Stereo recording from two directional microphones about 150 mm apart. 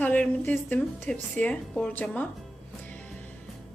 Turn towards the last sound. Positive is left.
turn(degrees=10)  # may be behind; listen again after turning